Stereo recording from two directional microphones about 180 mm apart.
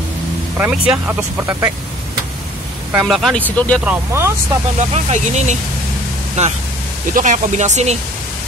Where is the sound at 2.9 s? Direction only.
Centre (ahead or behind).